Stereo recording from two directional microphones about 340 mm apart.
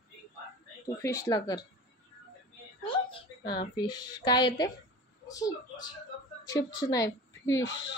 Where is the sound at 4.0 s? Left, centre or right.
Left.